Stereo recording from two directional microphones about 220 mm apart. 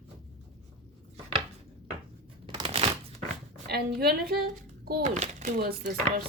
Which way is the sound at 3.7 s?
45° right (ahead or behind).